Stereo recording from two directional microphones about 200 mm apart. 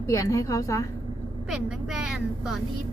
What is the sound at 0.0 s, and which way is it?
Speech, 15° left (ahead or behind).